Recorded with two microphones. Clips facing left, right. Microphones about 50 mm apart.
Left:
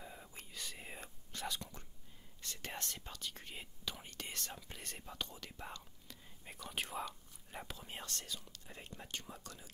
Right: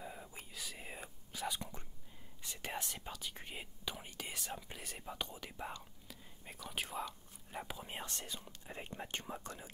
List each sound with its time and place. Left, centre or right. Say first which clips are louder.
0.0 s whispering: right 3 dB; centre
1.6 s whispering: right 3 dB; centre
5.0 s speech: right 3 dB; centre
6.0 s whispering: right 1 dB; centre
7.6 s speech: right 2 dB; centre